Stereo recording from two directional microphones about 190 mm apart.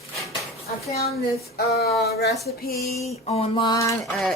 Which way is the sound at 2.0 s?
55° left (ahead or behind).